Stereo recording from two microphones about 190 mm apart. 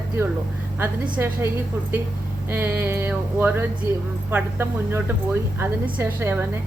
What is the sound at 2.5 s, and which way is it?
A woman's voice, 10° right (ahead or behind).